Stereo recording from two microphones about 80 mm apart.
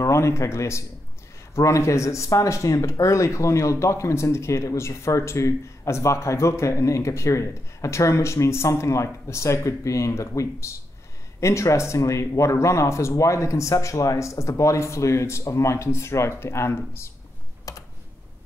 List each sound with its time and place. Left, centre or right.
0.0 s speech: left
17.7 s typing: left